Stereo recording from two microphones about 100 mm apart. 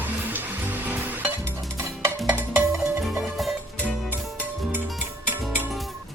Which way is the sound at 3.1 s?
Centre (ahead or behind).